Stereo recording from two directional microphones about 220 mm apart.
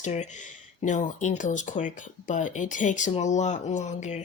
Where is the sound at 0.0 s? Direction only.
35° left (ahead or behind).